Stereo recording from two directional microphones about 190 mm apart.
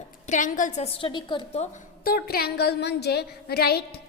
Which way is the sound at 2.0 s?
50° left (ahead or behind).